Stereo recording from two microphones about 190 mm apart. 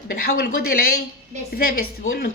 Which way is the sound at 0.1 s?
55° left (ahead or behind).